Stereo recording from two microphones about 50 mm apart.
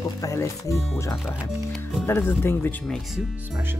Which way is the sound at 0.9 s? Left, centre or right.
Left.